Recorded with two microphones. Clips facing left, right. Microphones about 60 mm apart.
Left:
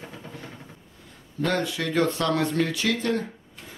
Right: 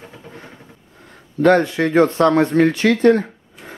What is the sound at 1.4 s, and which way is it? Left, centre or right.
Speech, right.